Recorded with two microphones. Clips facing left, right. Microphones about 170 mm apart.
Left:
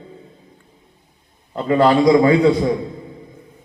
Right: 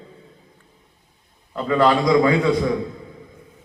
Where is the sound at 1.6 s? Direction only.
25° left (ahead or behind).